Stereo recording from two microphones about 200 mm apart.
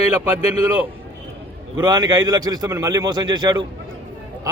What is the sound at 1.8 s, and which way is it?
A man's voice, 20° right (ahead or behind).